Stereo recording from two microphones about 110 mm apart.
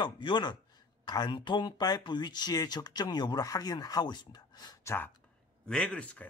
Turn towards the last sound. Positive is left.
turn(degrees=10)  # may be behind; listen again after turning